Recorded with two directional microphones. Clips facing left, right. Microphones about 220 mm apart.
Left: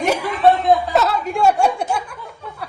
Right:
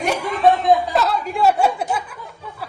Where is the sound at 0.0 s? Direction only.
Centre (ahead or behind).